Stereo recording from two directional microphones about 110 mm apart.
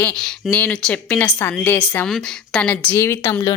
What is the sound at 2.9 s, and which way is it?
Speech, 25° left (ahead or behind).